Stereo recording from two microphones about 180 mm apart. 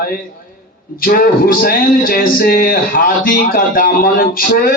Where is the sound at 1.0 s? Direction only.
55° left (ahead or behind).